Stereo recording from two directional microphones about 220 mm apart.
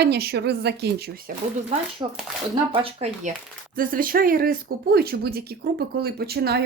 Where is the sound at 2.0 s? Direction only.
20° right (ahead or behind).